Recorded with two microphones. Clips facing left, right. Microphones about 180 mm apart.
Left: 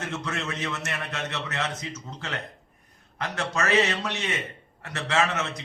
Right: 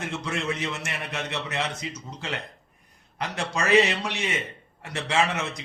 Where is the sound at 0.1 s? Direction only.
15° right (ahead or behind).